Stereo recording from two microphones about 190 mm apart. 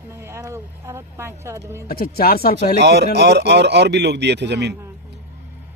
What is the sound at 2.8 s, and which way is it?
A man's voice, 60° right (ahead or behind).